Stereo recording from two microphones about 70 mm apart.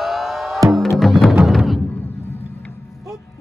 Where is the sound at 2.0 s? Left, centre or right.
Left.